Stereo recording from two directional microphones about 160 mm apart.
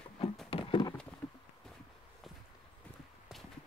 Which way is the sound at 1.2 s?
10° left (ahead or behind).